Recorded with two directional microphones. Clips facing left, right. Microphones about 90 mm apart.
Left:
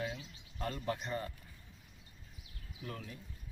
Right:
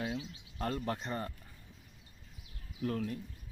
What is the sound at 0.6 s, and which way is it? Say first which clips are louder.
Speech: right 2 dB; 45° right (ahead or behind).